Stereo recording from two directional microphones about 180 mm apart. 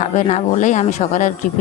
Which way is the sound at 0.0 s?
40° left (ahead or behind).